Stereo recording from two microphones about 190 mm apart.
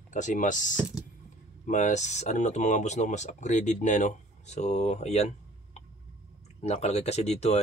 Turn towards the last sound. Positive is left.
turn(degrees=35)  # may be behind; listen again after turning